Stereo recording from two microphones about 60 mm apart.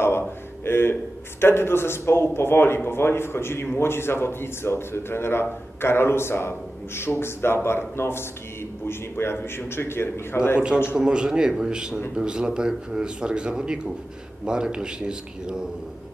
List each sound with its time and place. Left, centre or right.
0.7 s a sound: left
1.4 s speech: left
11.0 s a man's voice: centre